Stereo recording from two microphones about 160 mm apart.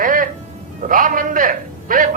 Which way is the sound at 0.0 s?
60° right (ahead or behind).